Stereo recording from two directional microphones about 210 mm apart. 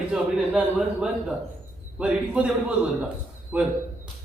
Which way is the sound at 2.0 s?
5° right (ahead or behind).